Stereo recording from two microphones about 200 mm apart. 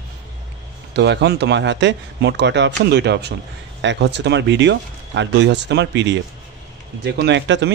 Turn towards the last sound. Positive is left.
turn(degrees=-60)  # may be behind; listen again after turning